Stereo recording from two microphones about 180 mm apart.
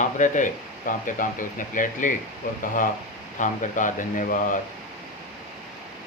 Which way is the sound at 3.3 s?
45° left (ahead or behind).